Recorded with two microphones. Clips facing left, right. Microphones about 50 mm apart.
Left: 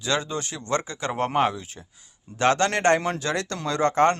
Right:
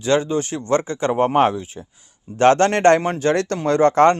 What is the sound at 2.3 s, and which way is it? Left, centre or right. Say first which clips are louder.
Speech: right 7 dB; right.